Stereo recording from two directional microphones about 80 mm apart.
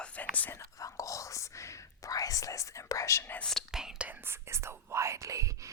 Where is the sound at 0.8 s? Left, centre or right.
Left.